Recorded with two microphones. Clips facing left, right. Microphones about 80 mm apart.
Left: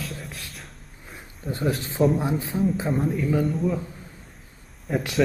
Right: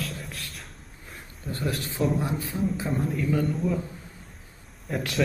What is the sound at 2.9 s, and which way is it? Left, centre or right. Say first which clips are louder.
Speech: left 3 dB; centre.